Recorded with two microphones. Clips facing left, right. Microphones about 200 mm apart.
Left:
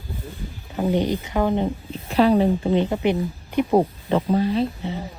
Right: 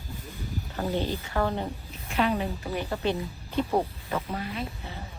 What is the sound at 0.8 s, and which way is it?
Speech, 15° left (ahead or behind).